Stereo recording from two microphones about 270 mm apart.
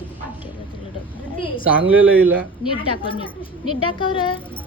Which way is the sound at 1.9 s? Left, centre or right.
Centre.